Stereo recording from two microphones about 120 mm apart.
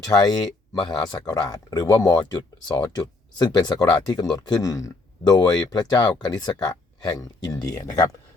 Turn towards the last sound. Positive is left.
turn(degrees=30)  # may be behind; listen again after turning